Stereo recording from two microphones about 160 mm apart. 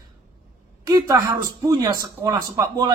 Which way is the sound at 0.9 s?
25° right (ahead or behind).